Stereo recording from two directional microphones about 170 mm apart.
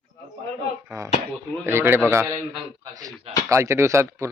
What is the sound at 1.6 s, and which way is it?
Speech, 15° right (ahead or behind).